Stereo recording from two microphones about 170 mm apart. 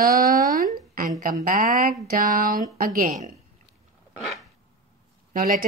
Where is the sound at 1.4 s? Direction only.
50° right (ahead or behind).